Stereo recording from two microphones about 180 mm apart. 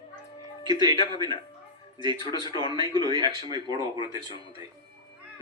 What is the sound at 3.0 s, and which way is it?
Speech, 25° right (ahead or behind).